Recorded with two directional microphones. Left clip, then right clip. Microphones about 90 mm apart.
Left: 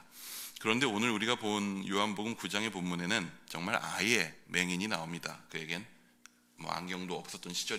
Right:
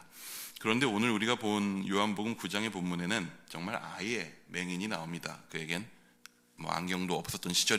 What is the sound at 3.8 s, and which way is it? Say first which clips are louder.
Speech: left 7 dB; 35° left (ahead or behind).